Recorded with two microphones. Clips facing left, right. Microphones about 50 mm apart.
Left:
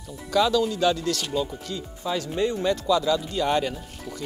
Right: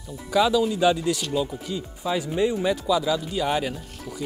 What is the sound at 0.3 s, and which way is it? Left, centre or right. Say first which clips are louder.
Speech: right 1 dB; centre.